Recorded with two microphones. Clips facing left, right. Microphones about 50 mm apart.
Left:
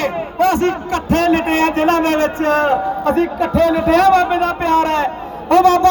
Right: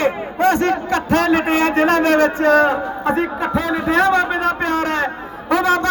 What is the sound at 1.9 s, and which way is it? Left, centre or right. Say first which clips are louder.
Speech: right 1 dB; left.